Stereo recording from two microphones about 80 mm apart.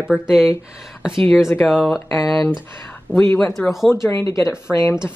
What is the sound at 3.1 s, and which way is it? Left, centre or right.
Speech, left.